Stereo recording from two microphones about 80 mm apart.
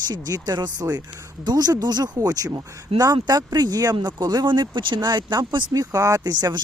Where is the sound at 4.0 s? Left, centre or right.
Right.